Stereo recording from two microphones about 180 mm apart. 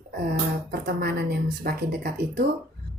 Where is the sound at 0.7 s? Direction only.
60° right (ahead or behind).